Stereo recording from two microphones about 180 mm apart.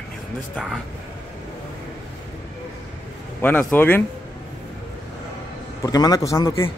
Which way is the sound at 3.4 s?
10° left (ahead or behind).